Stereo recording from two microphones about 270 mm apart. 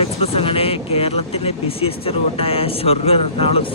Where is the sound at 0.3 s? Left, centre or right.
Left.